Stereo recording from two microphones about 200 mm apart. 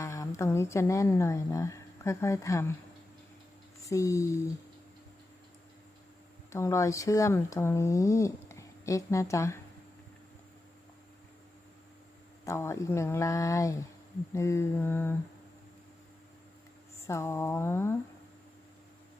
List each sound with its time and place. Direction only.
0.0 s a woman's voice: 15° left (ahead or behind)
3.8 s speech: 15° left (ahead or behind)
6.5 s speech: 15° left (ahead or behind)
12.5 s speech: 15° left (ahead or behind)
17.1 s speech: 15° left (ahead or behind)